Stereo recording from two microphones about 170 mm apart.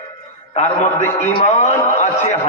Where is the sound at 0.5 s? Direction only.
40° left (ahead or behind).